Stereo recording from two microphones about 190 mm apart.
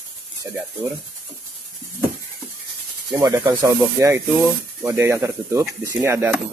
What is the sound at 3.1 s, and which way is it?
Speech, 15° right (ahead or behind).